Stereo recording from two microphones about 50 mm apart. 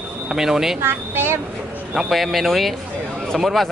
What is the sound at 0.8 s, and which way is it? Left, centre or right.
Speech, right.